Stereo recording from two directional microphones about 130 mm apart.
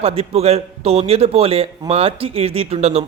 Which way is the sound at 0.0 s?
50° right (ahead or behind).